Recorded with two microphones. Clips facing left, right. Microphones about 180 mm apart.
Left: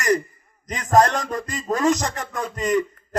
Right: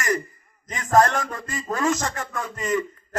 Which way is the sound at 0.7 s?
20° left (ahead or behind).